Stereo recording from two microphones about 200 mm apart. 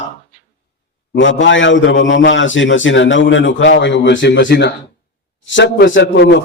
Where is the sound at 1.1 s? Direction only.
70° left (ahead or behind).